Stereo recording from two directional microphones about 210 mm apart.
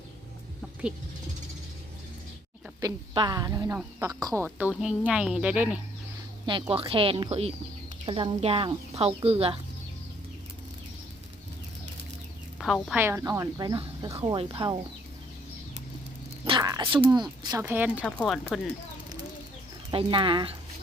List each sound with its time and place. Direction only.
2.8 s speech: 20° right (ahead or behind)
6.4 s a woman's voice: 25° right (ahead or behind)
12.5 s speech: centre (ahead or behind); by 14.8 s 20° right (ahead or behind)
16.5 s speech: 20° right (ahead or behind)
17.7 s speech: 5° right (ahead or behind)
18.0 s speech: 10° left (ahead or behind)
19.9 s a woman's voice: 25° right (ahead or behind)